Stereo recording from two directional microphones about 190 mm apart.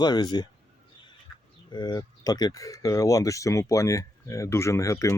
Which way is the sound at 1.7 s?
20° left (ahead or behind).